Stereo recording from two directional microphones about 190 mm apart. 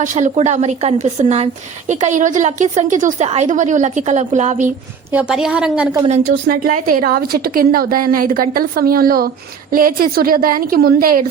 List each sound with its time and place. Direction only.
0.0 s a woman's voice: 40° right (ahead or behind)
5.1 s a woman's voice: 5° right (ahead or behind)
6.1 s a woman's voice: 35° right (ahead or behind)
6.5 s a woman's voice: 45° right (ahead or behind)